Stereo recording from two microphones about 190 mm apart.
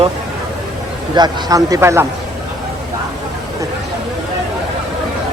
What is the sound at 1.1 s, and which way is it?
Speech, 20° right (ahead or behind).